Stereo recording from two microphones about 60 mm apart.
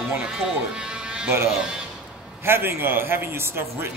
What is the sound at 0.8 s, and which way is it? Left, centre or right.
Sheep, centre.